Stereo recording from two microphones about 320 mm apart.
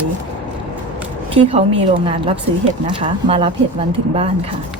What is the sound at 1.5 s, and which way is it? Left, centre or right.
Speech, centre.